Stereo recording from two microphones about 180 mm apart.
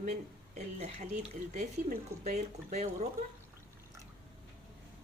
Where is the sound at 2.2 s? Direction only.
40° right (ahead or behind).